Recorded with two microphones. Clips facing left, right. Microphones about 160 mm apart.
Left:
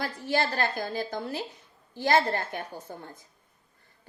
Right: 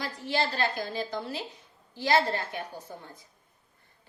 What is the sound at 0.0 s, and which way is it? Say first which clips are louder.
A woman's voice: left 2 dB; 50° left (ahead or behind).